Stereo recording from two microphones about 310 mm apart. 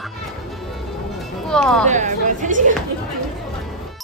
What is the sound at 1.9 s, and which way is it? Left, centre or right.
Speech, right.